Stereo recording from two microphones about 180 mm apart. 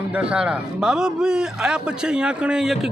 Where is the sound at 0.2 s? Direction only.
5° right (ahead or behind).